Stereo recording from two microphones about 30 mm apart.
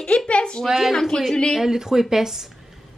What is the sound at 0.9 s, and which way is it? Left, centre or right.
Speech, centre.